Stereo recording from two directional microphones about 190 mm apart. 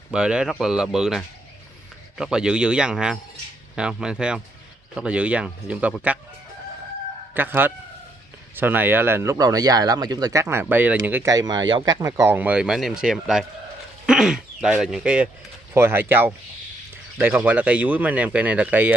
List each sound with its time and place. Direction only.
0.1 s speech: 5° right (ahead or behind)
7.3 s speech: 10° right (ahead or behind)